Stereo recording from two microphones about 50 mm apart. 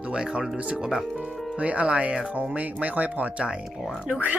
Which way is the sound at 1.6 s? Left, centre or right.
Right.